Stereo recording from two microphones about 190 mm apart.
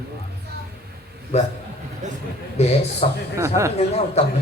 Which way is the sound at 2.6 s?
35° left (ahead or behind).